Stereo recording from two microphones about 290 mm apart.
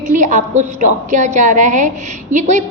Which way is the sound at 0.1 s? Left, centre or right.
Right.